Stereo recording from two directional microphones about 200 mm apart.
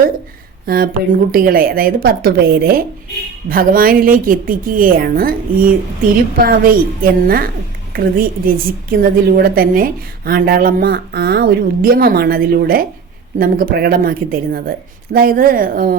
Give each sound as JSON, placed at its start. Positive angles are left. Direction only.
{"t": 1.3, "sound": "a woman's voice", "side_deg": -45}